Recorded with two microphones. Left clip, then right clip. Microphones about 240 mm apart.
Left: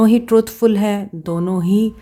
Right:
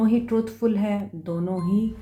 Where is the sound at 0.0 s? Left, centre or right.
Left.